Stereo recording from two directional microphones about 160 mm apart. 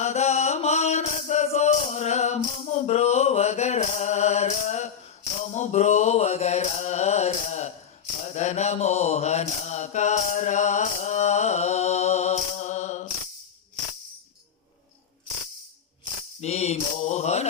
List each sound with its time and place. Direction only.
0.0 s music: 45° left (ahead or behind)
8.2 s mantra: 45° left (ahead or behind)
16.4 s music: 40° left (ahead or behind)